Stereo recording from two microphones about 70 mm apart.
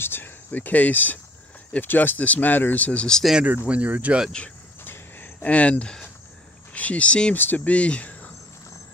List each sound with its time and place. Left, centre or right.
0.0 s speech: left; by 3.3 s centre
3.6 s speech: centre
4.8 s a sound: left
6.7 s speech: centre